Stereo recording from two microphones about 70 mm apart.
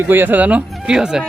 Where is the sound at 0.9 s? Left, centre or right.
Centre.